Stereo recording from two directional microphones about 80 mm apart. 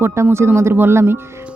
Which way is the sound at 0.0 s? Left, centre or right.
Right.